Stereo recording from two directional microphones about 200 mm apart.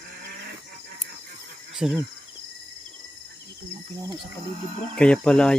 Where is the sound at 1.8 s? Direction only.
Centre (ahead or behind).